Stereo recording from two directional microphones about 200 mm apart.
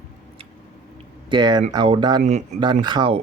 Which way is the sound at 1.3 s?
25° right (ahead or behind).